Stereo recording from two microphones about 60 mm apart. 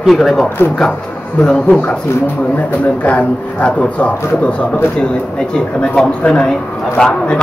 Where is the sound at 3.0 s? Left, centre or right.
Left.